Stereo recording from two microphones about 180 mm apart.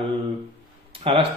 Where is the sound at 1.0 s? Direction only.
30° right (ahead or behind).